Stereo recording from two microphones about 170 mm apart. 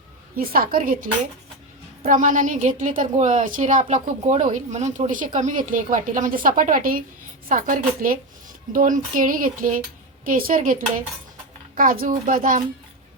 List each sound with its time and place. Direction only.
0.3 s speech: 60° right (ahead or behind)
2.0 s a woman's voice: 50° right (ahead or behind)